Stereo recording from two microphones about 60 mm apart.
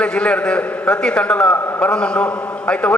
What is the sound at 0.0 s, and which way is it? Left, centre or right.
A man's voice, centre.